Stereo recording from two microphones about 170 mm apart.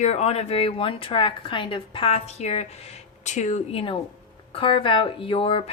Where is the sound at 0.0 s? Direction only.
40° left (ahead or behind).